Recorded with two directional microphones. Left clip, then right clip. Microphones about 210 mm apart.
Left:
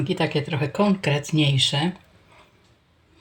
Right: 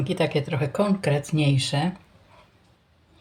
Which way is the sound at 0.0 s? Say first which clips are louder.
Even; 10° right (ahead or behind).